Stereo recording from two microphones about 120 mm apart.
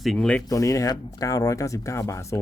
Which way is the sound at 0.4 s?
30° left (ahead or behind).